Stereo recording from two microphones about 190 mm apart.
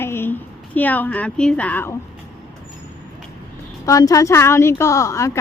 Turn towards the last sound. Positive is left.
turn(degrees=15)  # may be behind; listen again after turning